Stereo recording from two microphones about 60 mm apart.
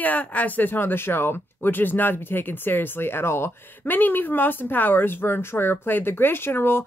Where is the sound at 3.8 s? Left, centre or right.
Left.